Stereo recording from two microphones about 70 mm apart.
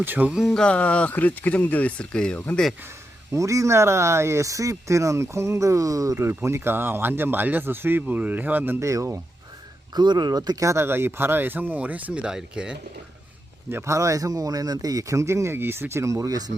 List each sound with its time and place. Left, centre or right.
0.0 s speech: right
0.4 s speech: centre
3.3 s speech: right
8.8 s speech: right
9.9 s speech: right; by 12.7 s centre
13.7 s speech: right